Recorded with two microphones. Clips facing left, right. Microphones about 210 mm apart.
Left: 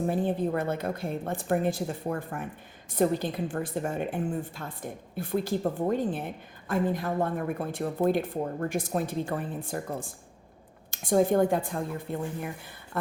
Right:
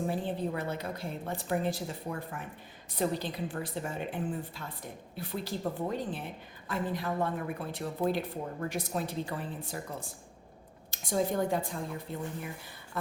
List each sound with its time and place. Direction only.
0.1 s a woman's voice: 50° left (ahead or behind)